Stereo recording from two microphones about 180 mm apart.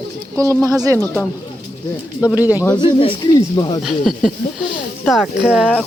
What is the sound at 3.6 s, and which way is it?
Speech, 20° left (ahead or behind).